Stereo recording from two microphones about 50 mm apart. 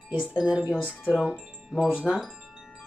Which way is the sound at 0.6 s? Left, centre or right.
Left.